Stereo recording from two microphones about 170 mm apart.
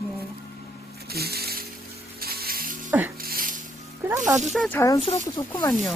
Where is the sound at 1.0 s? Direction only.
65° right (ahead or behind).